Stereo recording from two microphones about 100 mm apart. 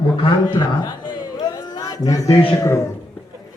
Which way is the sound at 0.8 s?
45° left (ahead or behind).